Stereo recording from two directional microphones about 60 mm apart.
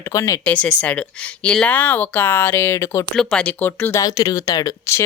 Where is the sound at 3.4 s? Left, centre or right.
Left.